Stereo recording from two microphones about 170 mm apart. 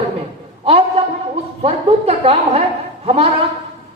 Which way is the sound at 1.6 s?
35° right (ahead or behind).